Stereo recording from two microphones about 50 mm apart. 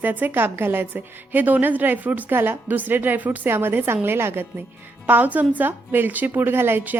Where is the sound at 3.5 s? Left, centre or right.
Right.